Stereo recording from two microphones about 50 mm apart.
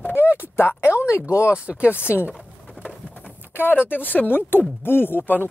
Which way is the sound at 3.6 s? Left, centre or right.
Left.